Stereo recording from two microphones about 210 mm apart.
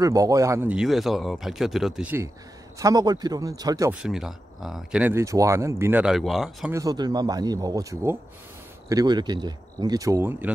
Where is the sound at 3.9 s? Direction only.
5° right (ahead or behind).